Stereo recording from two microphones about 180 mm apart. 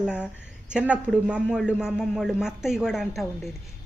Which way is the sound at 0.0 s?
5° right (ahead or behind).